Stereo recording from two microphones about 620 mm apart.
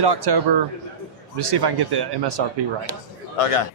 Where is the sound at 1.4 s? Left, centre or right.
Right.